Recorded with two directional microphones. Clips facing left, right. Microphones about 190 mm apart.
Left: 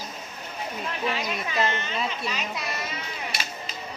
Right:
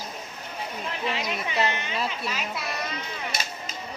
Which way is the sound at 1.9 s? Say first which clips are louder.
Even; 5° right (ahead or behind).